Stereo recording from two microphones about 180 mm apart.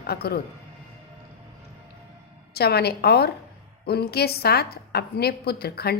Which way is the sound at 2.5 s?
60° left (ahead or behind).